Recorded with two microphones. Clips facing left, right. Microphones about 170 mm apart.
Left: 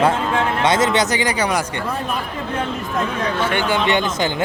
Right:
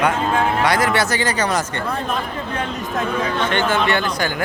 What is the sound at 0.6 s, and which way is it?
Speech, 20° left (ahead or behind).